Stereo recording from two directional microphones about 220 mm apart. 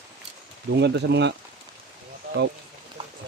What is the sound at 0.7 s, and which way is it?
Speech, 50° right (ahead or behind).